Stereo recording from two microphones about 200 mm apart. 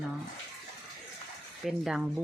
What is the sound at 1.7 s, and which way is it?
Speech, centre (ahead or behind).